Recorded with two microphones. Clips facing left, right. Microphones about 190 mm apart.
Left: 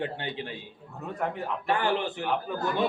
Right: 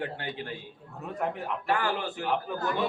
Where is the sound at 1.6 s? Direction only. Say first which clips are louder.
Left 2 dB; 25° left (ahead or behind).